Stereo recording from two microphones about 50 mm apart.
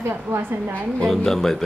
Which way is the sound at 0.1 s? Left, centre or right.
Right.